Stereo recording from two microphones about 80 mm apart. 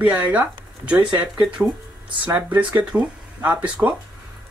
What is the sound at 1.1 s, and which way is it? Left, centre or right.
Speech, right.